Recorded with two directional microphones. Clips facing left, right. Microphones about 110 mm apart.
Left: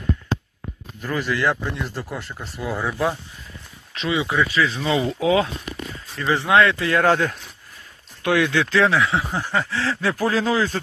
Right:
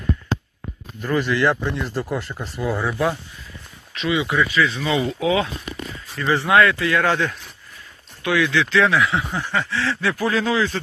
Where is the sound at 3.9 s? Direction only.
35° left (ahead or behind).